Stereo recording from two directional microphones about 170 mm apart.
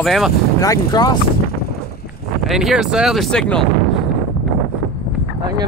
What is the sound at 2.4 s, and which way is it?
Speech, centre (ahead or behind).